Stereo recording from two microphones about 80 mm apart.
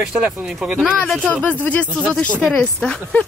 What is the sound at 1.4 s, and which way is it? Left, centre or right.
Speech, centre.